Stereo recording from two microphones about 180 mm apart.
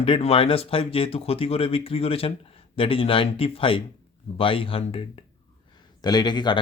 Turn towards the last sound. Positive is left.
turn(degrees=25)  # may be behind; listen again after turning